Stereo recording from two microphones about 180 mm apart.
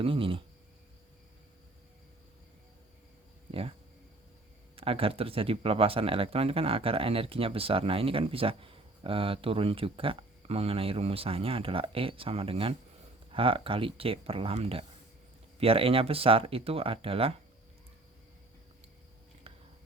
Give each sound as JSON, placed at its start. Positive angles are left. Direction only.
{"t": 0.0, "sound": "speech", "side_deg": -30}
{"t": 3.5, "sound": "speech", "side_deg": -30}
{"t": 19.5, "sound": "a sound", "side_deg": -30}